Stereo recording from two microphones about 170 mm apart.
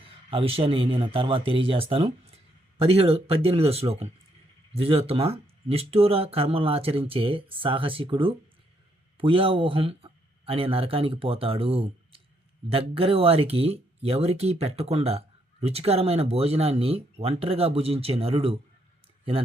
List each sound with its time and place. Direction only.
0.0 s speech: 30° right (ahead or behind)